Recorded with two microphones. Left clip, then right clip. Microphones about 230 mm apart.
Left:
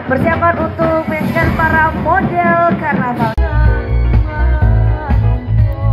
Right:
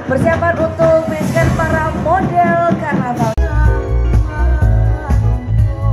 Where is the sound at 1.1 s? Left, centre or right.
Right.